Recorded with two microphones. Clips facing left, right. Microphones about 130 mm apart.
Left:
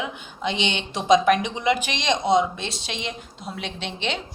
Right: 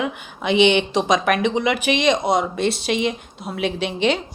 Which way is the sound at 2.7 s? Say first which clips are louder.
Right 11 dB; 65° right (ahead or behind).